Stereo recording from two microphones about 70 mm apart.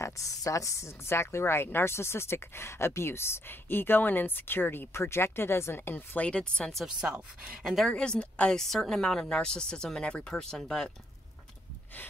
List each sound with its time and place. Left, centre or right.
0.0 s a woman's voice: left; by 6.7 s centre
6.9 s speech: centre
7.9 s speech: centre